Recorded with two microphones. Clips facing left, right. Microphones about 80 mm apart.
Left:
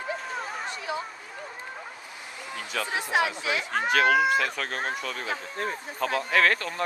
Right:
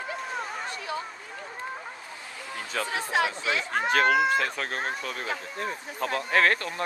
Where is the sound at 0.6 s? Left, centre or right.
Centre.